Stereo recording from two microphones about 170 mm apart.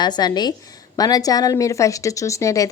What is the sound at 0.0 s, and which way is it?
A woman's voice, 25° left (ahead or behind).